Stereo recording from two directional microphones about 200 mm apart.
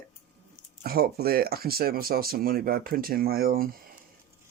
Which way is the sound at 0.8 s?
50° right (ahead or behind).